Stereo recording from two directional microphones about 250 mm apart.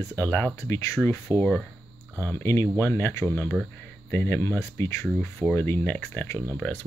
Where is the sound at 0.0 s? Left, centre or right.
Centre.